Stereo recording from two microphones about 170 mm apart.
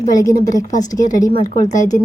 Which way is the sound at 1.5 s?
45° left (ahead or behind).